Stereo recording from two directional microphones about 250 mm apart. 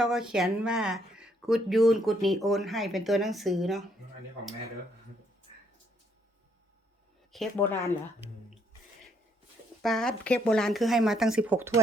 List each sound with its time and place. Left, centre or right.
0.0 s speech: centre
7.3 s speech: centre
9.8 s speech: centre